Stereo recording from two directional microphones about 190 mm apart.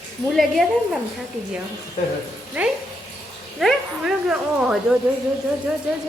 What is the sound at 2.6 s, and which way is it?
Speech, 5° right (ahead or behind).